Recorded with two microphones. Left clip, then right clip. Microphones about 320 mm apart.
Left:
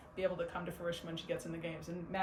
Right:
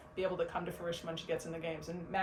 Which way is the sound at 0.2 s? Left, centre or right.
Centre.